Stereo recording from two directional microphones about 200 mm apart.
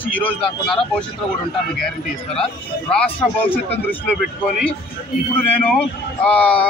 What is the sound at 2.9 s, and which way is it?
Speech, 5° left (ahead or behind).